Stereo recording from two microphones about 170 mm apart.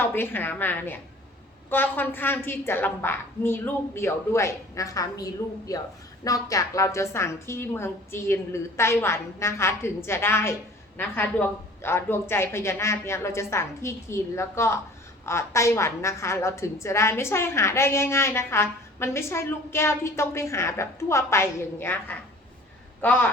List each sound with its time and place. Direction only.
0.0 s a woman's voice: 10° left (ahead or behind)